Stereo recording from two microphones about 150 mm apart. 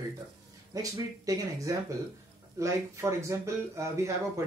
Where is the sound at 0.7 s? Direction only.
25° right (ahead or behind).